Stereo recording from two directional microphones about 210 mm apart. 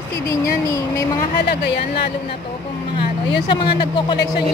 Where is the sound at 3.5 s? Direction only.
25° left (ahead or behind).